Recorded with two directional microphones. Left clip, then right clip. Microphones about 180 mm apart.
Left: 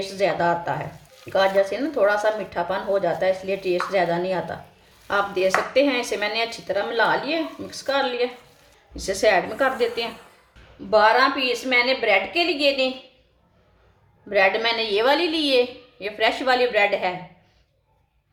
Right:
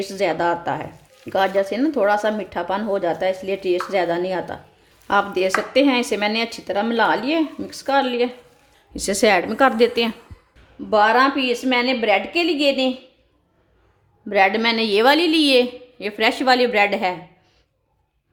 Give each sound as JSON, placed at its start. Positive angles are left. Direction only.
{"t": 0.0, "sound": "speech", "side_deg": -50}
{"t": 9.0, "sound": "a woman's voice", "side_deg": -65}
{"t": 10.8, "sound": "speech", "side_deg": -50}
{"t": 14.3, "sound": "a woman's voice", "side_deg": -50}